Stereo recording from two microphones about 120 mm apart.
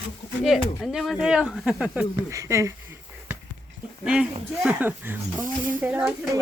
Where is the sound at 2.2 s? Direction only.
25° right (ahead or behind).